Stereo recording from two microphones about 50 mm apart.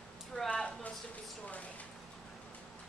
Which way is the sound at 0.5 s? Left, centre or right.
Left.